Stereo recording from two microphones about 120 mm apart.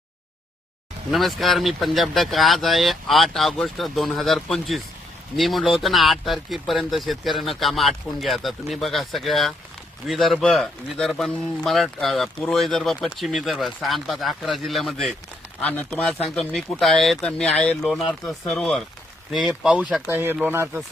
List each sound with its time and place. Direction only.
1.1 s speech: centre (ahead or behind)
15.6 s speech: 10° left (ahead or behind); by 20.8 s 15° right (ahead or behind)